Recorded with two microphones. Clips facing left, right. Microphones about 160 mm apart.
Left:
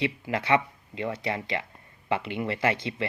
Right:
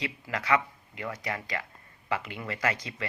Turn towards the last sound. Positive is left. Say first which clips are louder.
# left 5 dB
turn(degrees=25)  # may be behind; listen again after turning